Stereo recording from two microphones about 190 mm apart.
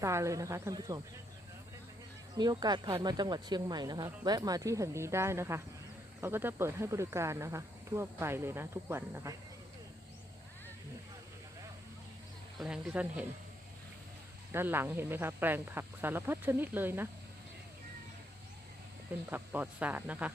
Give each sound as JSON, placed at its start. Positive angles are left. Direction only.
{"t": 0.0, "sound": "speech", "side_deg": -15}
{"t": 2.3, "sound": "speech", "side_deg": -20}
{"t": 12.5, "sound": "speech", "side_deg": -5}
{"t": 14.5, "sound": "speech", "side_deg": -10}
{"t": 19.3, "sound": "speech", "side_deg": -10}